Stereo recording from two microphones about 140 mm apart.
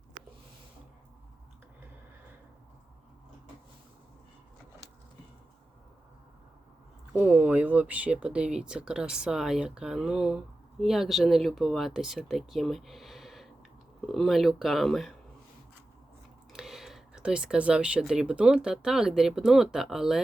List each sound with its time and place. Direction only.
7.1 s speech: 10° right (ahead or behind)
16.5 s speech: centre (ahead or behind)